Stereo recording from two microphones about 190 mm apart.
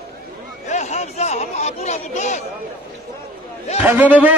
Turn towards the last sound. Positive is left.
turn(degrees=-10)  # may be behind; listen again after turning